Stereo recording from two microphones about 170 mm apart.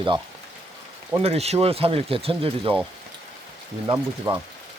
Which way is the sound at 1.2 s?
35° right (ahead or behind).